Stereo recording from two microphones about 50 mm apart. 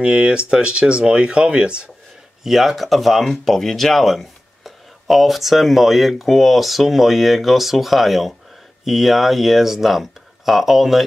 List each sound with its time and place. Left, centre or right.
0.0 s speech: centre
2.4 s speech: centre